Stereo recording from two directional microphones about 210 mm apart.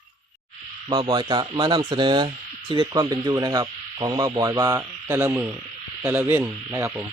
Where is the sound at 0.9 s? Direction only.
20° right (ahead or behind).